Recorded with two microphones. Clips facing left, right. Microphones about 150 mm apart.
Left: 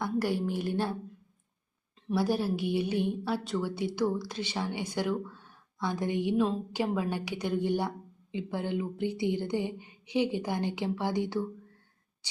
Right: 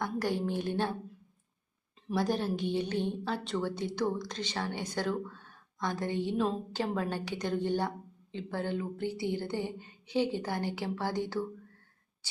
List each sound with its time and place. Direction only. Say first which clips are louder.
0.0 s a woman's voice: left 2 dB; 10° left (ahead or behind)
2.0 s a woman's voice: left 2 dB; 5° left (ahead or behind)